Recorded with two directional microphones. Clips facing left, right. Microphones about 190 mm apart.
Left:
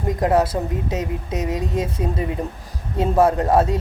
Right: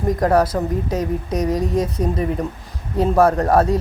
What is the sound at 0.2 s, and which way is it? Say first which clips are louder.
Speech: even; 25° left (ahead or behind).